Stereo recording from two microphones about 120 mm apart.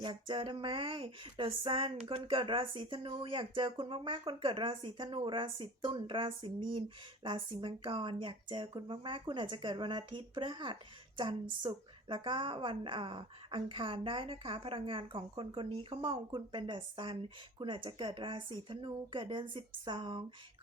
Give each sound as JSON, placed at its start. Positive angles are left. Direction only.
{"t": 0.0, "sound": "a woman's voice", "side_deg": -40}